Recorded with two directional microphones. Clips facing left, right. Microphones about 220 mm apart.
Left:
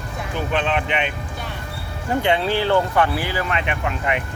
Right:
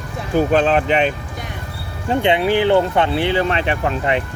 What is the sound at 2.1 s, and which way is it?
Speech, 20° right (ahead or behind).